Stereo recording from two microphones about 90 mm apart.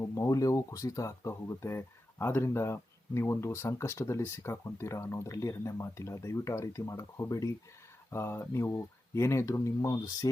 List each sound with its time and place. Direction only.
0.0 s speech: 35° left (ahead or behind)